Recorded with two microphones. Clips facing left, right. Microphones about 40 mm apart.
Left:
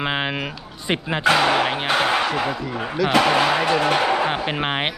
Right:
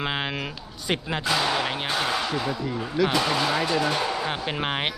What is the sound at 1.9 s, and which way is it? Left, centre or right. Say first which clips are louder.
Speech: left 7 dB; left.